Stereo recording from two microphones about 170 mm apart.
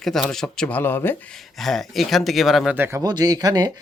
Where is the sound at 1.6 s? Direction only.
Centre (ahead or behind).